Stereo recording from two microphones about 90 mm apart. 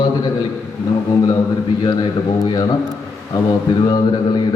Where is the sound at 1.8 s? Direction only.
60° left (ahead or behind).